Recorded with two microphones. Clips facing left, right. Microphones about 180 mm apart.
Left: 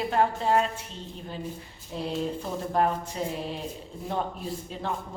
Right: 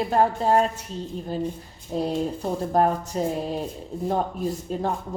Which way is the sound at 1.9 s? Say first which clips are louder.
Right 5 dB; 40° right (ahead or behind).